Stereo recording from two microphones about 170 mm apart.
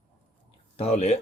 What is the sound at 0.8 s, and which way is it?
Speech, 40° left (ahead or behind).